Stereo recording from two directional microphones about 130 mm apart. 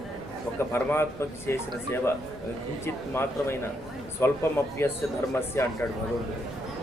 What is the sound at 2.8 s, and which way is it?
Speech, 20° left (ahead or behind).